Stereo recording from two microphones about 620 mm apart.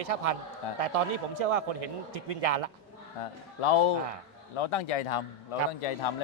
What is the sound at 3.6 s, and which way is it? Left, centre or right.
A man's voice, left.